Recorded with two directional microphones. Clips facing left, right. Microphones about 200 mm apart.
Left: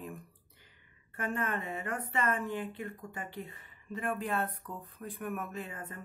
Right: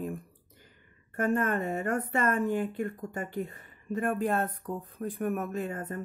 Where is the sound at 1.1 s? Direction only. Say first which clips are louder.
Right 7 dB; 45° right (ahead or behind).